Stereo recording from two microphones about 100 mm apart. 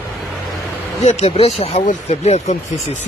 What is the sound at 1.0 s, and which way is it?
Speech, 85° left.